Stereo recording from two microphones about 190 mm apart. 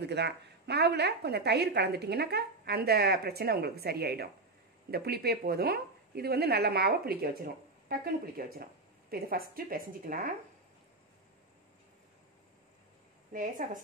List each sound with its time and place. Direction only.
0.0 s a woman's voice: 60° right (ahead or behind); by 10.3 s 45° right (ahead or behind)
13.3 s a woman's voice: 45° right (ahead or behind)